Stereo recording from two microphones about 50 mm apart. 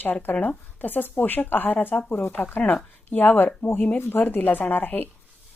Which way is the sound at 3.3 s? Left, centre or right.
Left.